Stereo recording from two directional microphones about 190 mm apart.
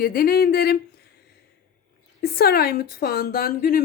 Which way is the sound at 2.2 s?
55° left (ahead or behind).